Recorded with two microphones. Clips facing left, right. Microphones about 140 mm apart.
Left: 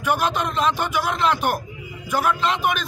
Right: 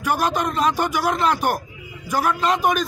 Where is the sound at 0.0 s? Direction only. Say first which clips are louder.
Right 1 dB; 40° right (ahead or behind).